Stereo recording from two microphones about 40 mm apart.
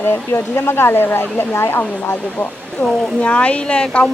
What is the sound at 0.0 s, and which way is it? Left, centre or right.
Speech, left.